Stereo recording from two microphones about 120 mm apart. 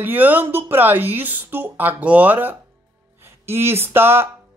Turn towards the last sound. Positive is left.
turn(degrees=-20)  # may be behind; listen again after turning